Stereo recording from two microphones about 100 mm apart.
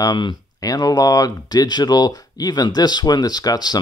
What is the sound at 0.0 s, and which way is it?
Speech, 45° left (ahead or behind).